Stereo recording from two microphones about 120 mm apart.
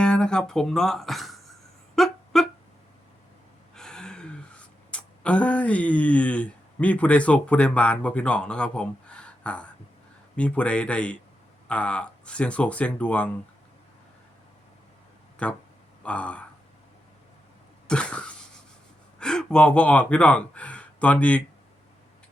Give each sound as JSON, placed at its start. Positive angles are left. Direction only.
{"t": 0.0, "sound": "guitar", "side_deg": 5}
{"t": 2.0, "sound": "a sound", "side_deg": 0}
{"t": 3.8, "sound": "speech", "side_deg": 5}
{"t": 15.4, "sound": "speech", "side_deg": 10}
{"t": 17.8, "sound": "cough", "side_deg": 10}
{"t": 19.2, "sound": "speech", "side_deg": 5}